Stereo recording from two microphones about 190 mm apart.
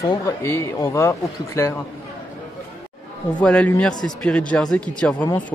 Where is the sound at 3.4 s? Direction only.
5° left (ahead or behind).